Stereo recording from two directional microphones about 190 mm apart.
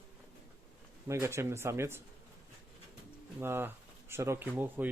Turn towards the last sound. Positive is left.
turn(degrees=-10)  # may be behind; listen again after turning